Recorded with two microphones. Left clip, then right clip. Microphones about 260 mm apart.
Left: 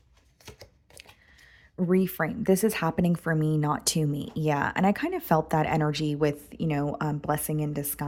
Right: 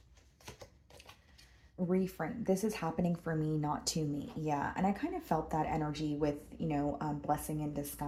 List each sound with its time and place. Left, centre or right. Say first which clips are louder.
0.4 s shuffling cards: left 4 dB; left
1.7 s speech: left 9 dB; left